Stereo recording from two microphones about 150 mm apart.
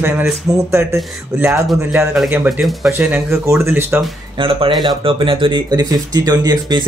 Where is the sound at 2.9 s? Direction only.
15° right (ahead or behind).